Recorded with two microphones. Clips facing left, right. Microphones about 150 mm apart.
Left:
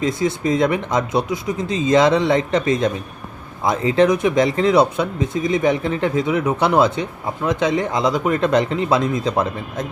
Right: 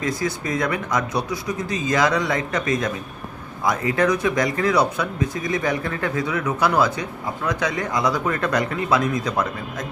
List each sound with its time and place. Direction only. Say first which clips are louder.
0.0 s speech: left 5 dB; 25° left (ahead or behind)